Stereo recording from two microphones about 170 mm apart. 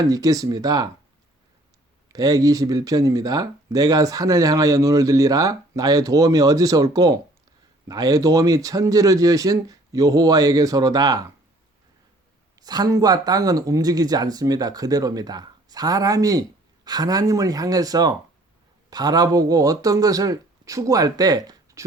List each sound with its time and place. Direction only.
0.0 s speech: 20° right (ahead or behind)
2.0 s speech: 20° right (ahead or behind)
12.5 s speech: 25° right (ahead or behind)